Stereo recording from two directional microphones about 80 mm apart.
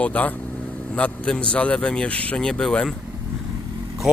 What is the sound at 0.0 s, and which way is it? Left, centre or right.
A man's voice, centre.